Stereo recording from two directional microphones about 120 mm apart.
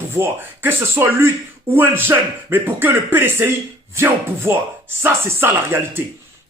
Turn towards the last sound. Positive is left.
turn(degrees=-20)  # may be behind; listen again after turning